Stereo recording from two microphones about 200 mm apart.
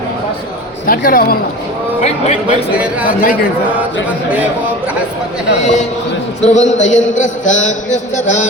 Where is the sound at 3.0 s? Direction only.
45° left (ahead or behind).